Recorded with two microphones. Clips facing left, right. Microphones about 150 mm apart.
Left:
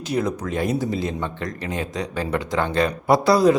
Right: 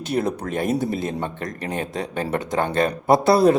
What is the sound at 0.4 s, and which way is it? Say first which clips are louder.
Speech: right 1 dB; 55° right (ahead or behind).